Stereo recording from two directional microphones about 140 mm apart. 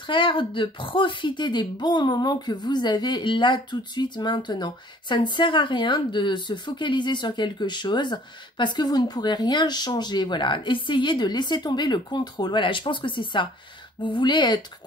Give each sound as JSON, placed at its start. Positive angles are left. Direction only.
{"t": 0.0, "sound": "speech", "side_deg": 35}